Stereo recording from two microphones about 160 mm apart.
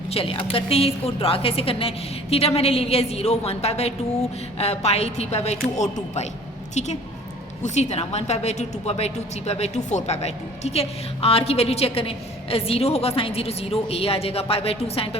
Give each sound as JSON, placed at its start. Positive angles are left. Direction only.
{"t": 0.1, "sound": "a woman's voice", "side_deg": 35}